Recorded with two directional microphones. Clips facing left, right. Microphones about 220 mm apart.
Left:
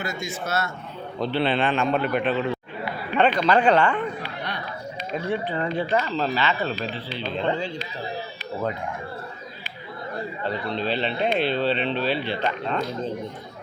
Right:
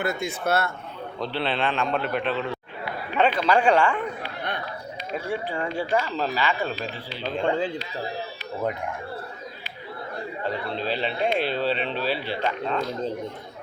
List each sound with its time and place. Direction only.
0.0 s speech: 60° right (ahead or behind)
1.2 s a man's voice: centre (ahead or behind)
5.1 s speech: 10° right (ahead or behind)
10.4 s speech: 5° right (ahead or behind)